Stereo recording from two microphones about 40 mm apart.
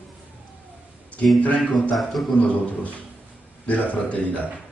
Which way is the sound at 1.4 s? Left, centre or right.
Left.